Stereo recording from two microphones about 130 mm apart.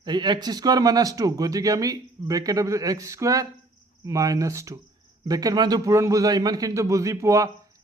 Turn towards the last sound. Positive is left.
turn(degrees=-25)  # may be behind; listen again after turning